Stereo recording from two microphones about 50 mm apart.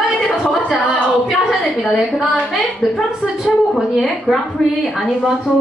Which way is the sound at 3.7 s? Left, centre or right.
Centre.